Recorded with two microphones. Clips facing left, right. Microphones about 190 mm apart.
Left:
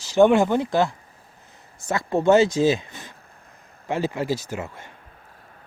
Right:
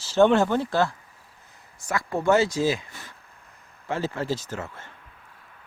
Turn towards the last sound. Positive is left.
turn(degrees=15)  # may be behind; listen again after turning